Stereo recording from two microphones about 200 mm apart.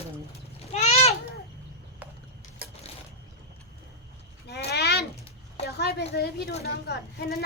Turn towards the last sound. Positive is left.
turn(degrees=55)  # may be behind; listen again after turning